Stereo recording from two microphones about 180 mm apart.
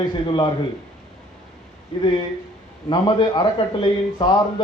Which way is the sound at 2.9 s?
25° left (ahead or behind).